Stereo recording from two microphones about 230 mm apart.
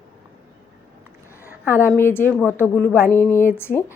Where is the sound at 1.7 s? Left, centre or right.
Centre.